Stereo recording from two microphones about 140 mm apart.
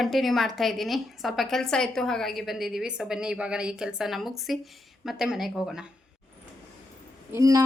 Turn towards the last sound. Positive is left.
turn(degrees=-25)  # may be behind; listen again after turning